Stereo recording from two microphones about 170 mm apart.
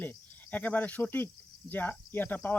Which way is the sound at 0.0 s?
10° left (ahead or behind).